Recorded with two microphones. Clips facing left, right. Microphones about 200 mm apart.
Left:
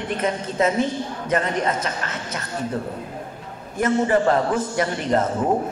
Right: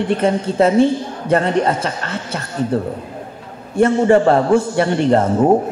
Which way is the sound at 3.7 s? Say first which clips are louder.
Right 7 dB; 30° right (ahead or behind).